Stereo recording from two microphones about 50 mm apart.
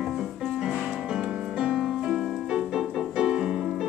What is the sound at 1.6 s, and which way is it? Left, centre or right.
Music, centre.